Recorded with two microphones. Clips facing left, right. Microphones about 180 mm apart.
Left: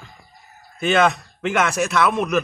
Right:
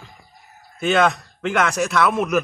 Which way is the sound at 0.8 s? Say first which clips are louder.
Even; centre (ahead or behind).